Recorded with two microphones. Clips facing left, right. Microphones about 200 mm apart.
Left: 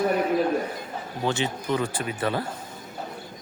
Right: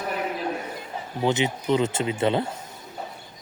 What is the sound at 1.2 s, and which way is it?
Speech, 20° right (ahead or behind).